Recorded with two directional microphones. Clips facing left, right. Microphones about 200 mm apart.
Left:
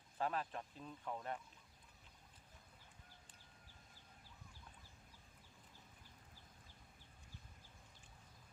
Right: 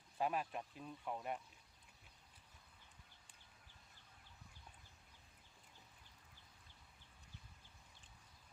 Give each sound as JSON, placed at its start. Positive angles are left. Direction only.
{"t": 0.2, "sound": "speech", "side_deg": -15}